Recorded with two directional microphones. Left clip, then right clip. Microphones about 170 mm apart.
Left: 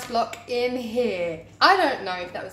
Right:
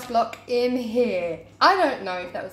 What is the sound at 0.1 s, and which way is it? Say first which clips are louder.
A woman's voice: right 3 dB; 25° right (ahead or behind).